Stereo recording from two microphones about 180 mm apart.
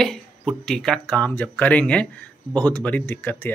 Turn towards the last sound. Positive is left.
turn(degrees=10)  # may be behind; listen again after turning